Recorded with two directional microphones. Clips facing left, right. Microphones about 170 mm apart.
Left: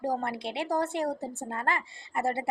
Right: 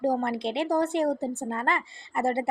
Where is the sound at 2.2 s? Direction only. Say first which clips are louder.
Right 4 dB; 20° right (ahead or behind).